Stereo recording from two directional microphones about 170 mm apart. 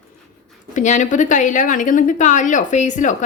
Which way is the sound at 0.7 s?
45° left (ahead or behind).